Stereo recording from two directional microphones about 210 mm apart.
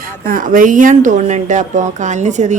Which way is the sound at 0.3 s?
40° right (ahead or behind).